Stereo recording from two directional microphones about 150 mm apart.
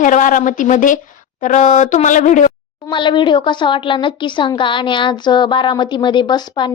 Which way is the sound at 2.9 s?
30° left (ahead or behind).